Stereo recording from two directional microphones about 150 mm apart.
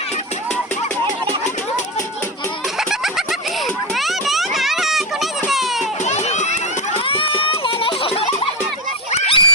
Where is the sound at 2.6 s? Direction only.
Centre (ahead or behind).